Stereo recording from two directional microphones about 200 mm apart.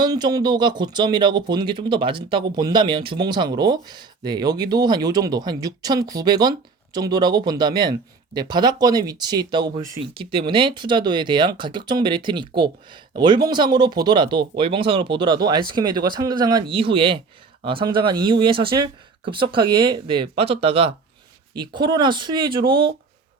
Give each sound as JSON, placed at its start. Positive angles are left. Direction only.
{"t": 0.0, "sound": "speech", "side_deg": -20}